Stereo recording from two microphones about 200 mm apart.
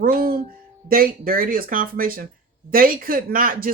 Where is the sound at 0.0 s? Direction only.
50° right (ahead or behind).